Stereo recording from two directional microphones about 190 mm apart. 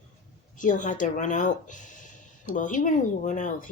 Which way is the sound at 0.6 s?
40° left (ahead or behind).